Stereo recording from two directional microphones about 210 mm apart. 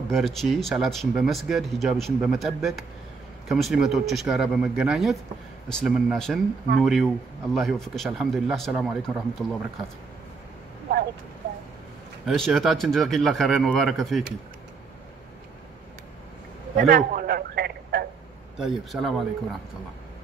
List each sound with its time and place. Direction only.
0.1 s speech: centre (ahead or behind)
12.3 s speech: centre (ahead or behind)
16.7 s a man's voice: 40° right (ahead or behind)
18.6 s speech: centre (ahead or behind)